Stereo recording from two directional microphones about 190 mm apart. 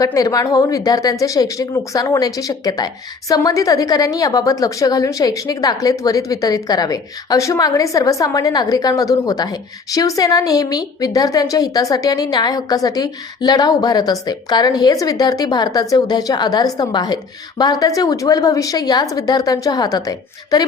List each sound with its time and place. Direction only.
0.0 s speech: 20° left (ahead or behind)